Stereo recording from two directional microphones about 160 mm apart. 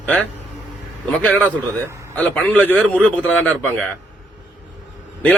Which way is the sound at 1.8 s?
15° right (ahead or behind).